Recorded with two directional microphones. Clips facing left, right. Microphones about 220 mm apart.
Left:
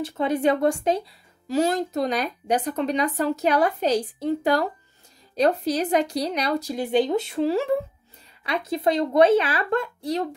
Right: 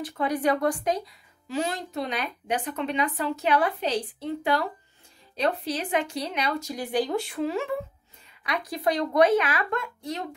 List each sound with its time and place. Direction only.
0.0 s speech: 25° left (ahead or behind)
1.5 s speech: 40° left (ahead or behind)